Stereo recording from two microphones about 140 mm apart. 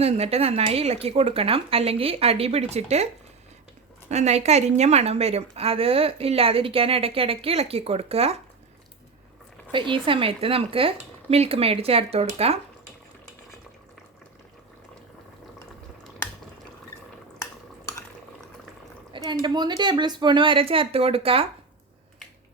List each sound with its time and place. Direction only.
0.0 s a woman's voice: 45° right (ahead or behind)
4.1 s a woman's voice: 50° right (ahead or behind)
9.7 s a woman's voice: 35° right (ahead or behind)
19.1 s speech: 30° right (ahead or behind)